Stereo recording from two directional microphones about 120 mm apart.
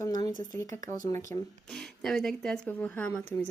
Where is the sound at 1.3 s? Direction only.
80° right.